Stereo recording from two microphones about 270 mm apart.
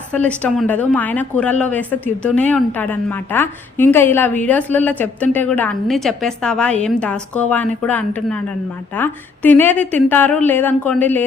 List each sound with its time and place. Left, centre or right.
0.1 s a woman's voice: centre